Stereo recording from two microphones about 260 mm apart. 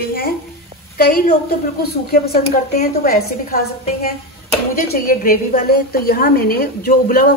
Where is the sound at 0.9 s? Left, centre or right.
Left.